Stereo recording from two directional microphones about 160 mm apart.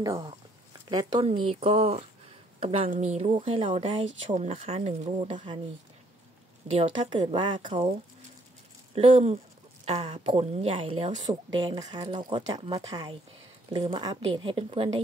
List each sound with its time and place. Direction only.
0.0 s speech: 20° right (ahead or behind)
1.2 s speech: 35° right (ahead or behind)
5.3 s speech: 30° right (ahead or behind)
6.7 s speech: 35° right (ahead or behind)
8.9 s speech: 40° right (ahead or behind)